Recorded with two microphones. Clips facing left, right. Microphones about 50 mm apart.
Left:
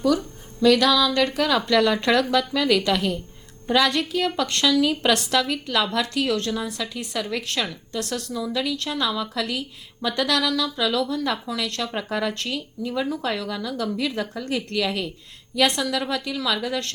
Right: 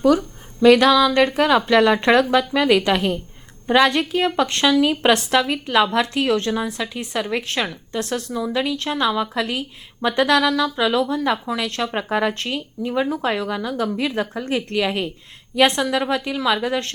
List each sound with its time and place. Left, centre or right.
0.0 s a woman's voice: right